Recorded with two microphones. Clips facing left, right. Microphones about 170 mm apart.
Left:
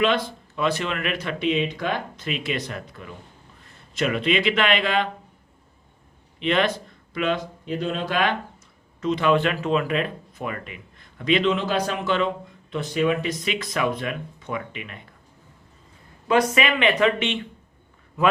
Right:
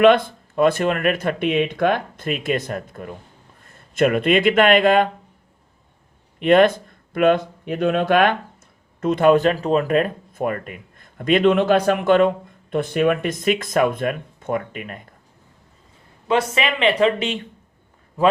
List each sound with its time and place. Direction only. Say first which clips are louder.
0.0 s speech: right 8 dB; 55° right (ahead or behind)
6.4 s speech: right 8 dB; 50° right (ahead or behind)
16.2 s speech: even; 25° right (ahead or behind)